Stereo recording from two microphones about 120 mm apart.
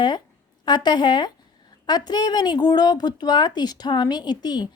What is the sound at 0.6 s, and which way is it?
Speech, 35° left (ahead or behind).